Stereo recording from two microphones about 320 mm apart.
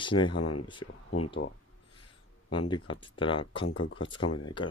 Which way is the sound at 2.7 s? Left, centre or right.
Centre.